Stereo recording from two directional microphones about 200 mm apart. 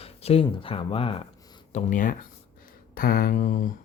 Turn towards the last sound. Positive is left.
turn(degrees=40)  # may be behind; listen again after turning